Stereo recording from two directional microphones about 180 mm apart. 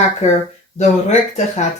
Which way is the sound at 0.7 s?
40° left (ahead or behind).